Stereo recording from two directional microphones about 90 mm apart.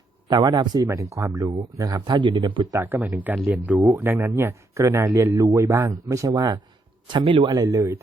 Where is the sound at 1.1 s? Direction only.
35° right (ahead or behind); by 2.7 s 65° right (ahead or behind).